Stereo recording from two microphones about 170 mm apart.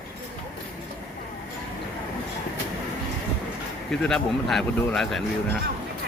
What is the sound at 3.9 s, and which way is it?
Speech, 5° left (ahead or behind).